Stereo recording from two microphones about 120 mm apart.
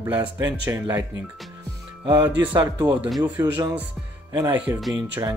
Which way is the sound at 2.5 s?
35° right (ahead or behind).